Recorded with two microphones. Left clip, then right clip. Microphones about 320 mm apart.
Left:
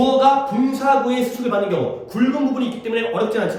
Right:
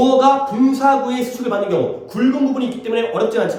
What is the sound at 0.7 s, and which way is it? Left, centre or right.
A man's voice, centre.